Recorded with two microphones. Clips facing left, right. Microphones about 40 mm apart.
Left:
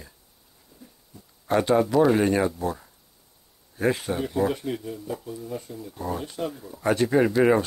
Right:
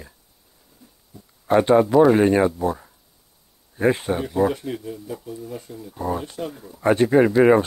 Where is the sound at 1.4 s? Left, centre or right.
Centre.